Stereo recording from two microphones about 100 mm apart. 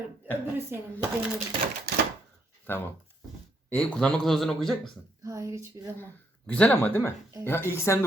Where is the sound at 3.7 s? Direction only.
10° left (ahead or behind).